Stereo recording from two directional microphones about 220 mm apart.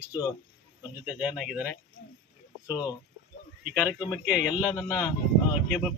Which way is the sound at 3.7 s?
5° right (ahead or behind).